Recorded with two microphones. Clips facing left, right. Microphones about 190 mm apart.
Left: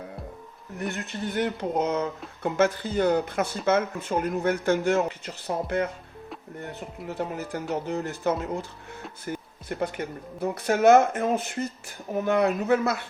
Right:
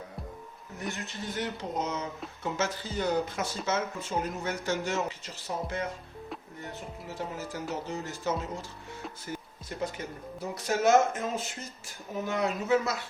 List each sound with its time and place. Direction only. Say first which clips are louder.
0.8 s speech: left 6 dB; 60° left (ahead or behind)
7.1 s speech: left 6 dB; 60° left (ahead or behind)